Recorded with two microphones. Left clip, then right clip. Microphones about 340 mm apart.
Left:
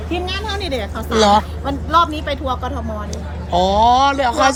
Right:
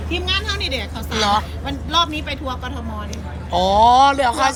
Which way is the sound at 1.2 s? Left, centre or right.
Centre.